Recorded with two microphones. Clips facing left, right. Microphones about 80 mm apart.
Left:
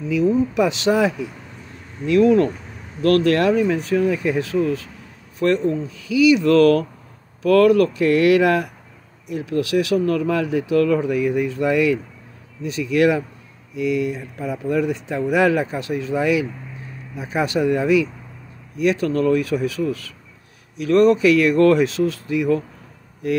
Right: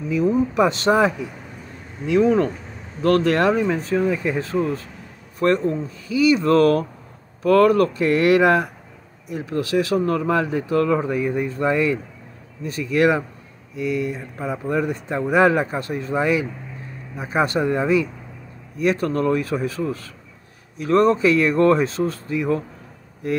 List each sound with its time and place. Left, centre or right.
0.1 s speech: right
3.0 s speech: right